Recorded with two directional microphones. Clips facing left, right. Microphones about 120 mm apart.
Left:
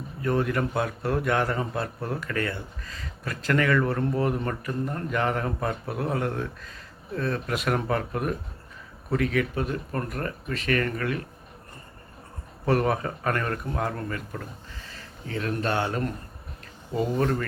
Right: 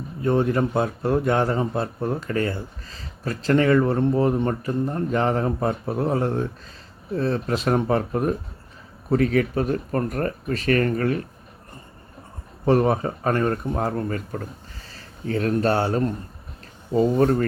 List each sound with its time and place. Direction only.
0.2 s a man's voice: 30° right (ahead or behind)
12.6 s a man's voice: 30° right (ahead or behind)